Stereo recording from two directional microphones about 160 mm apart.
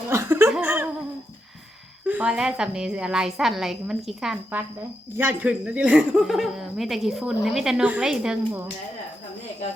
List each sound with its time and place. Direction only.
0.1 s laughter: 15° right (ahead or behind)
0.5 s a sound: 10° right (ahead or behind)
2.0 s a woman's voice: 5° right (ahead or behind)